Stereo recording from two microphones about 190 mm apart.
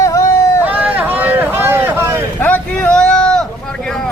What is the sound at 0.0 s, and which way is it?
Run, 15° left (ahead or behind).